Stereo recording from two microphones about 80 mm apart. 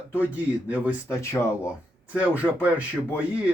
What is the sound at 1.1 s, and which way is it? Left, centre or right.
Speech, left.